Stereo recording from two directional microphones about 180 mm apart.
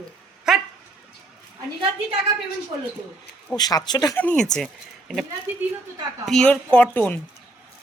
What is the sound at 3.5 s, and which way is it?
Speech, 20° left (ahead or behind).